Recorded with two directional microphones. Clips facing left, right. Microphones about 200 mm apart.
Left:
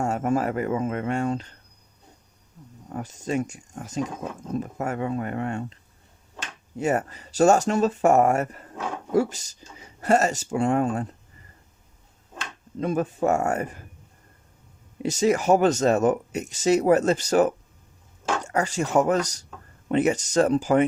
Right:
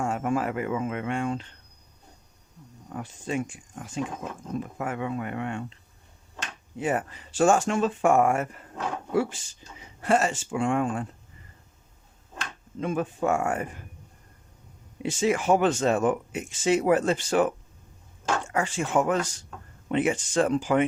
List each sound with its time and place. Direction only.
0.0 s speech: 40° left (ahead or behind)
2.9 s speech: 40° left (ahead or behind)
6.7 s speech: 40° left (ahead or behind)
12.8 s speech: 40° left (ahead or behind)
15.0 s speech: 40° left (ahead or behind)